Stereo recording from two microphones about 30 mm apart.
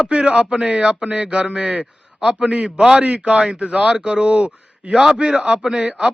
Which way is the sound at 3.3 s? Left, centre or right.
Right.